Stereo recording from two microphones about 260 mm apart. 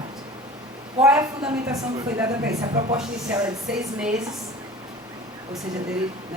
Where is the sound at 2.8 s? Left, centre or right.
Right.